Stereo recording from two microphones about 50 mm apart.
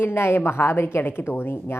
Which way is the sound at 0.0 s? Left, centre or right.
Left.